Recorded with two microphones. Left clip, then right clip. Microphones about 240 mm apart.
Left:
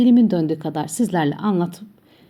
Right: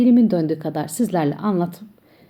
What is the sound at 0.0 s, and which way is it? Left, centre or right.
A woman's voice, centre.